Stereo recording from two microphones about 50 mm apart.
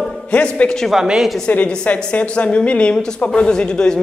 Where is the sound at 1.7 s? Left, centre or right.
Left.